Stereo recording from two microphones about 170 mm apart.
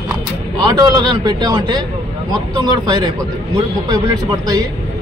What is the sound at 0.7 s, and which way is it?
Speech, 25° right (ahead or behind).